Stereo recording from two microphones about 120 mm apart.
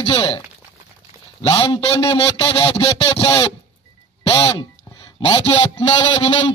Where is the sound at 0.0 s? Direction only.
40° left (ahead or behind).